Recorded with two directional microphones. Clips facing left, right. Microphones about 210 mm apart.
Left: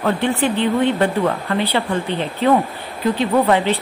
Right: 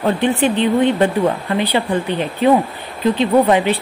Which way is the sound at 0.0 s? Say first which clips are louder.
Right 2 dB; 20° right (ahead or behind).